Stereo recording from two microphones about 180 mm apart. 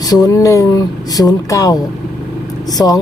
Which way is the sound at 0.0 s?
20° left (ahead or behind).